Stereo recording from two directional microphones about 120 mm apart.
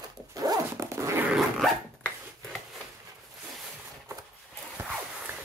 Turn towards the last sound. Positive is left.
turn(degrees=-15)  # may be behind; listen again after turning